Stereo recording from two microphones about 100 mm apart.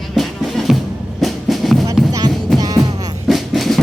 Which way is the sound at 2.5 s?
40° right (ahead or behind).